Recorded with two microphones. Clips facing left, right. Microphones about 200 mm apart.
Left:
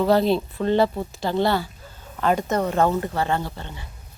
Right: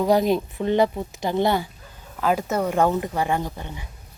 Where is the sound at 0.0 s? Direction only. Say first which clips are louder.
Even; 15° right (ahead or behind).